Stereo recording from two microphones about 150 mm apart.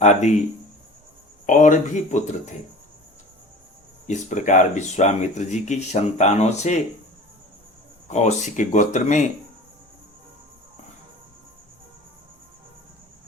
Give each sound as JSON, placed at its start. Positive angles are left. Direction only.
{"t": 0.0, "sound": "speech", "side_deg": 50}
{"t": 1.5, "sound": "speech", "side_deg": 60}
{"t": 4.0, "sound": "speech", "side_deg": 55}
{"t": 8.0, "sound": "speech", "side_deg": 50}